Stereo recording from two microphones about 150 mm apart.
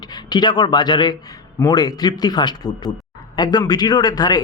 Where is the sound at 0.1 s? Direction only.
30° left (ahead or behind).